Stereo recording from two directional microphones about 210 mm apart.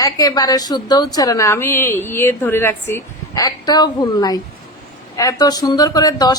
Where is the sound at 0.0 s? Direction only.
20° left (ahead or behind).